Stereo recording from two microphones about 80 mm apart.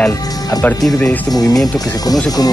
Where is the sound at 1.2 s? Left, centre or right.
Left.